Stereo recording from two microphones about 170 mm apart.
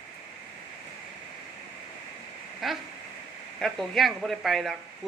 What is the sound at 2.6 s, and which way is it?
Speech, centre (ahead or behind).